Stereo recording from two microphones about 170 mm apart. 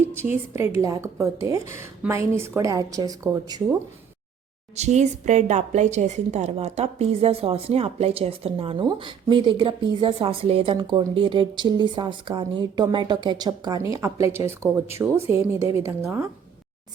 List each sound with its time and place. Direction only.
0.1 s a woman's voice: 15° right (ahead or behind)
4.8 s a woman's voice: 45° right (ahead or behind); by 16.3 s 15° right (ahead or behind)